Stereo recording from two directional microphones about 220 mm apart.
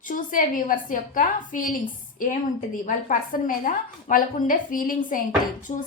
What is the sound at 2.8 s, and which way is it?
A woman's voice, 35° left (ahead or behind).